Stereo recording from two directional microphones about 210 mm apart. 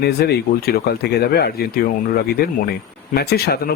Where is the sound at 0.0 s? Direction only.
50° left (ahead or behind).